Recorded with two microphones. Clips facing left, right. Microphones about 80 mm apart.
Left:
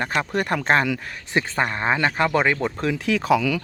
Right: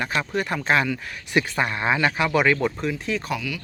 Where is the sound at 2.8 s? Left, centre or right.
Left.